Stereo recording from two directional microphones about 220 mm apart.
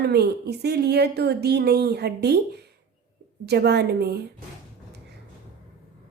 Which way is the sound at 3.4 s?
50° right (ahead or behind).